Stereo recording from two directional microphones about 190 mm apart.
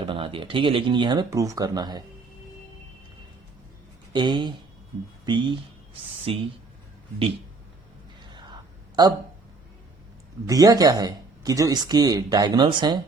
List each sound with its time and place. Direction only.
0.0 s speech: 25° right (ahead or behind)
4.1 s speech: 25° right (ahead or behind)
8.3 s whispering: 25° right (ahead or behind)
10.4 s speech: 20° right (ahead or behind)